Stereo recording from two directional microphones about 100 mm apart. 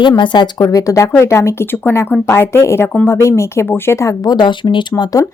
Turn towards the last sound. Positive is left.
turn(degrees=40)  # may be behind; listen again after turning